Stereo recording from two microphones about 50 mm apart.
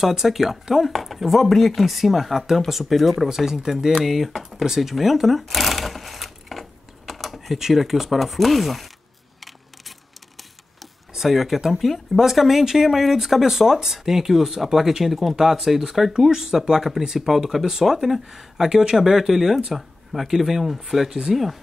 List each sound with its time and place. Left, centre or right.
0.0 s speech: centre
10.8 s a sound: centre
11.8 s speech: centre